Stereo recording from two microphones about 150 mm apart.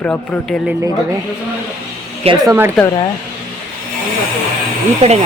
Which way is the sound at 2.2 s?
25° right (ahead or behind).